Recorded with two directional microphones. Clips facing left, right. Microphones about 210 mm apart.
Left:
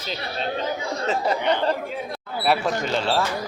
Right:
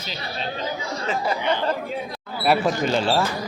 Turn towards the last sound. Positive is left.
turn(degrees=0)  # may be behind; listen again after turning